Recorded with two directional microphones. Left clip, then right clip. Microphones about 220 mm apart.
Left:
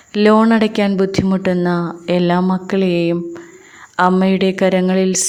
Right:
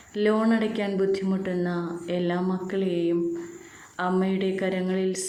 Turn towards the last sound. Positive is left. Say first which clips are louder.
# left 11 dB
turn(degrees=50)  # may be behind; listen again after turning